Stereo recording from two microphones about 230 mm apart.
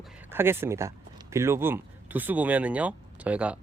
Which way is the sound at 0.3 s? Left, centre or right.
Centre.